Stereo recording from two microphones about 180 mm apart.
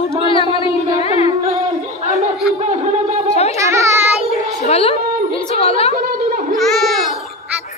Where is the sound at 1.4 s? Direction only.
35° right (ahead or behind).